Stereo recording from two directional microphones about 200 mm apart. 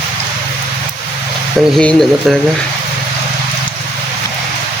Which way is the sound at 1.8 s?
5° left (ahead or behind).